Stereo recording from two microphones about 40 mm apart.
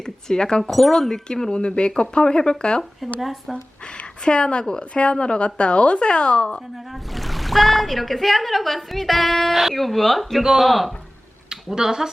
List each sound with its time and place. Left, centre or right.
0.0 s speech: centre
0.6 s speech: centre; by 2.8 s left
3.2 s speech: centre
4.2 s speech: left
7.1 s speech: centre
11.4 s a sound: centre